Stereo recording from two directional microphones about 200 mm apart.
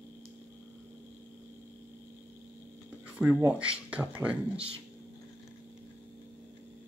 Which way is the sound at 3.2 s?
10° right (ahead or behind).